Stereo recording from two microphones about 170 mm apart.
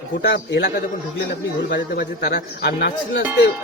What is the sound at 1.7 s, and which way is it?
A man's voice, 75° left (ahead or behind).